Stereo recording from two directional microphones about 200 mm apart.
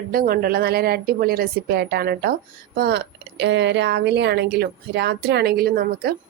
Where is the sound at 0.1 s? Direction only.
45° right (ahead or behind).